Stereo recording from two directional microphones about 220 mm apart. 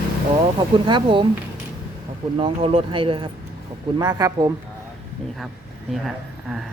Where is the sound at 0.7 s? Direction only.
20° right (ahead or behind).